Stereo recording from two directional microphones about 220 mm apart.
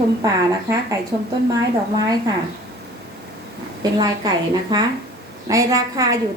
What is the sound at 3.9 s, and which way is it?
Speech, 20° right (ahead or behind).